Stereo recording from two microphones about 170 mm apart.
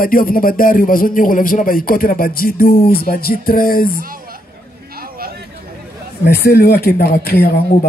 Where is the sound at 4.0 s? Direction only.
55° right (ahead or behind).